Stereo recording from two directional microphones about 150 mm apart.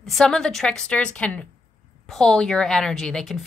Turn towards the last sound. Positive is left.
turn(degrees=5)  # may be behind; listen again after turning